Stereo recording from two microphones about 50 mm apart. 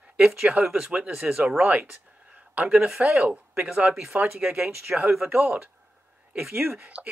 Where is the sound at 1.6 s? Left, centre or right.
Right.